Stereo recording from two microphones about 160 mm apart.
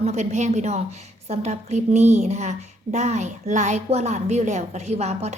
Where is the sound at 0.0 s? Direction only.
45° right (ahead or behind).